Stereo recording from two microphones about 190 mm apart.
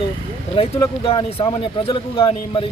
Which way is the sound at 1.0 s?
30° left (ahead or behind).